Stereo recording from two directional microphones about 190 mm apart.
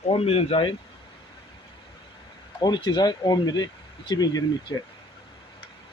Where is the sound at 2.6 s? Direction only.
20° left (ahead or behind).